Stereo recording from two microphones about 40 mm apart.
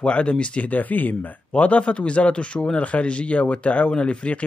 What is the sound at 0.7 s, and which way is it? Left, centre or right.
Speech, left.